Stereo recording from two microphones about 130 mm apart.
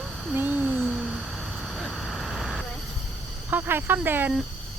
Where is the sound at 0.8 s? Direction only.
Centre (ahead or behind).